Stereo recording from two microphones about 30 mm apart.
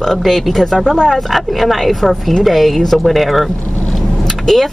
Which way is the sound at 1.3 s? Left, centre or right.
Centre.